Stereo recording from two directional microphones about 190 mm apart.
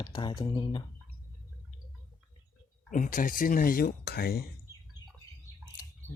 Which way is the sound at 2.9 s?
45° left (ahead or behind).